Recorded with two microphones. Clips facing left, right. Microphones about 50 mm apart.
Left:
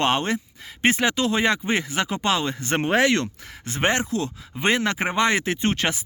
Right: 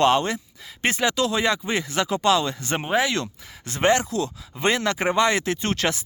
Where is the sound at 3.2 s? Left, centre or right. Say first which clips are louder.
Left 3 dB; left.